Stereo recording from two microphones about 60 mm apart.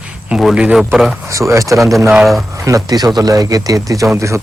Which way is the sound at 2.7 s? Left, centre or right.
Right.